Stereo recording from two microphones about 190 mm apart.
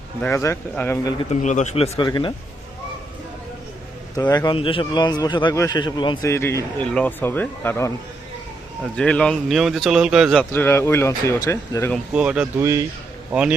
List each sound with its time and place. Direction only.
0.2 s speech: 15° left (ahead or behind)
1.2 s speech: 35° left (ahead or behind)
4.2 s a man's voice: 20° left (ahead or behind); by 10.4 s centre (ahead or behind)
10.5 s speech: 10° left (ahead or behind)
12.1 s speech: 5° right (ahead or behind)